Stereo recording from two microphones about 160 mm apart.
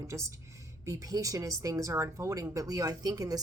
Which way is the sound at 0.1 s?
20° right (ahead or behind).